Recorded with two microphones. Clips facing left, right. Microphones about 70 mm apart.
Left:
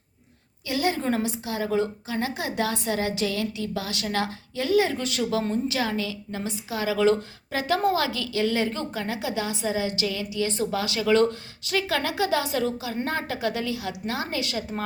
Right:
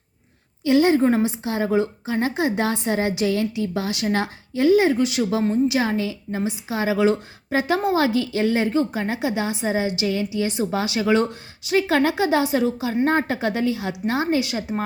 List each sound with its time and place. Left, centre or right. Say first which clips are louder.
0.6 s a woman's voice: right 9 dB; right
5.8 s a woman's voice: right 4 dB; right